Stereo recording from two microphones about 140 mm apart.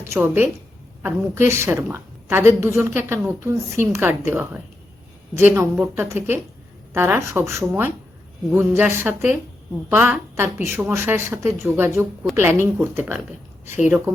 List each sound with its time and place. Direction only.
0.0 s a woman's voice: 15° right (ahead or behind)